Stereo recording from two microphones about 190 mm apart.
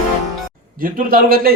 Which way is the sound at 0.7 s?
45° right (ahead or behind).